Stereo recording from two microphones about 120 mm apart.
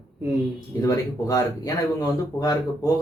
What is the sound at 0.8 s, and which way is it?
Speech, 30° left (ahead or behind).